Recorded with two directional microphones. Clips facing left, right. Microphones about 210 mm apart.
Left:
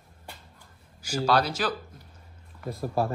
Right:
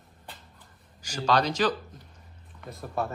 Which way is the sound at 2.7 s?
35° left (ahead or behind).